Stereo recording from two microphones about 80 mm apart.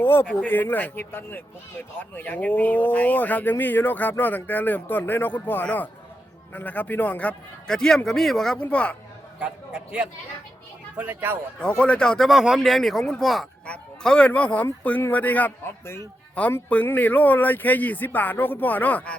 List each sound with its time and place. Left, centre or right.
0.0 s speech: left
7.7 s speech: centre
8.6 s speech: centre
9.4 s a man's voice: centre
11.6 s speech: centre